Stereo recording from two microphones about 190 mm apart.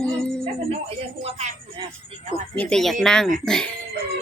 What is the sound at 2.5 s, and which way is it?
Speech, 5° left (ahead or behind).